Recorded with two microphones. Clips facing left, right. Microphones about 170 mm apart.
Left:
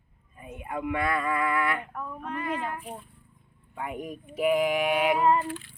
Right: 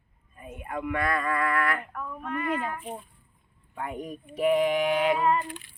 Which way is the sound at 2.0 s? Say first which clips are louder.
Right 2 dB; 20° left (ahead or behind).